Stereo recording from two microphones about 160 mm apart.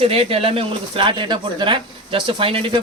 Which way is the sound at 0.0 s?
35° right (ahead or behind).